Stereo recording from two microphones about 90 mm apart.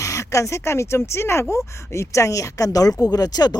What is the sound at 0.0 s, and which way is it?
A woman's voice, 35° left (ahead or behind).